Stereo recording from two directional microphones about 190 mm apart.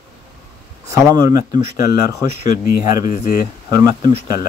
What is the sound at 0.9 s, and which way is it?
Speech, 20° right (ahead or behind).